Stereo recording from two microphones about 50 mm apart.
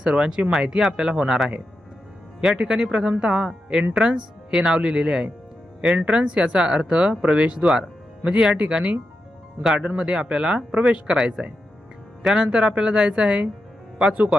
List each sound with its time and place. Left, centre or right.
0.0 s speech: centre
2.6 s speech: centre
9.6 s speech: centre
9.9 s speech: right
14.0 s speech: centre